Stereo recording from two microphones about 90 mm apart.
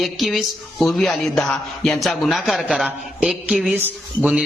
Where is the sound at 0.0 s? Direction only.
Centre (ahead or behind).